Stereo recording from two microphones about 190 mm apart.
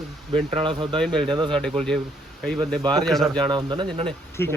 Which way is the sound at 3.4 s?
25° right (ahead or behind).